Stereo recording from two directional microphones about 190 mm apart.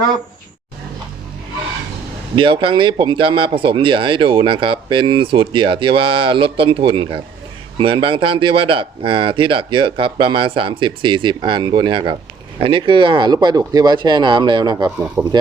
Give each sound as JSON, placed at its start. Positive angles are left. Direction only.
{"t": 2.3, "sound": "speech", "side_deg": -25}